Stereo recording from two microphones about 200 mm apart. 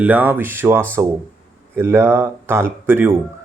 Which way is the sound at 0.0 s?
10° right (ahead or behind).